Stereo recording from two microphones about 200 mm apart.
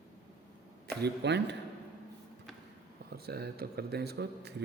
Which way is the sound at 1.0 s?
60° right (ahead or behind).